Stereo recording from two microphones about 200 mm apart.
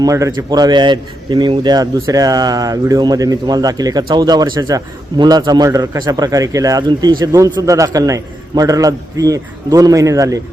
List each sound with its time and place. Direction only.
0.0 s speech: 15° right (ahead or behind)